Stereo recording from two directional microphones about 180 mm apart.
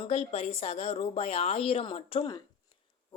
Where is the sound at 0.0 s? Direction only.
35° left (ahead or behind).